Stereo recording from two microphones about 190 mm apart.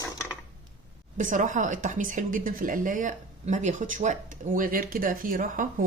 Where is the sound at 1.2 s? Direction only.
40° right (ahead or behind).